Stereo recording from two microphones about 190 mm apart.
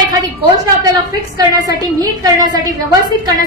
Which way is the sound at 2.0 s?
20° right (ahead or behind).